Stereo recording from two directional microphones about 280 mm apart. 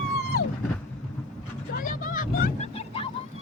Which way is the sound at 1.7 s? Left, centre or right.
Left.